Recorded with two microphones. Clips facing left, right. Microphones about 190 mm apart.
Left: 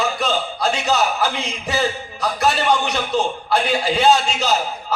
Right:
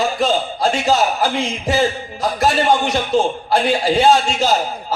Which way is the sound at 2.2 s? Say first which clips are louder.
Right 3 dB; 30° right (ahead or behind).